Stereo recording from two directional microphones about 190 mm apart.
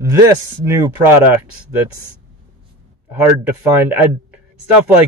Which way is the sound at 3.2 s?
10° right (ahead or behind).